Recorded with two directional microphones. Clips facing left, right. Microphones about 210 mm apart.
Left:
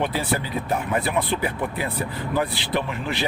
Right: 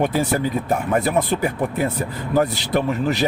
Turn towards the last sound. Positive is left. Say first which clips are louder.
# right 6 dB
turn(degrees=-40)  # may be behind; listen again after turning